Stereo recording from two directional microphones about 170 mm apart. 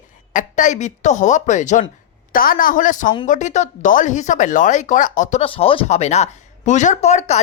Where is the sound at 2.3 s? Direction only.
55° left (ahead or behind).